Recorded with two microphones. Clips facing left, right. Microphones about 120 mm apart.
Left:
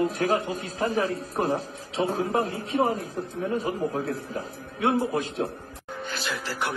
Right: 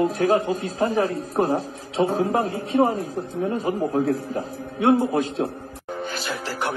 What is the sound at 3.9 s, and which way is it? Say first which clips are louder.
A man's voice: right 7 dB; 35° right (ahead or behind).